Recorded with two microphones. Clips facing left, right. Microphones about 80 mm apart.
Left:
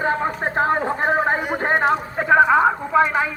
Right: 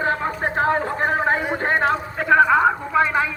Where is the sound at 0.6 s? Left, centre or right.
Left.